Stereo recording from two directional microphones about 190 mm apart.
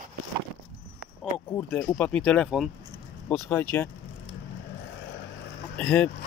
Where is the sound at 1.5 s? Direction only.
15° left (ahead or behind).